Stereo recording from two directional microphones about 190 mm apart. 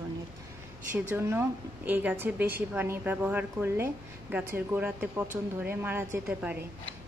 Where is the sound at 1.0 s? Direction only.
10° right (ahead or behind).